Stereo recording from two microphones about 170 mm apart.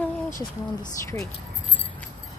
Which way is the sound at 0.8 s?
20° left (ahead or behind).